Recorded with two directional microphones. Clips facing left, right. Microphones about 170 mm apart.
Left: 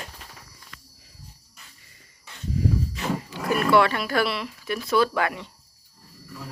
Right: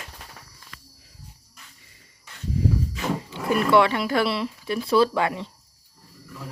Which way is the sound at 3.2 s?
25° right (ahead or behind).